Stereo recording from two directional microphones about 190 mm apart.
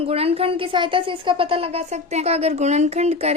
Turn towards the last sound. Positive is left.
turn(degrees=-35)  # may be behind; listen again after turning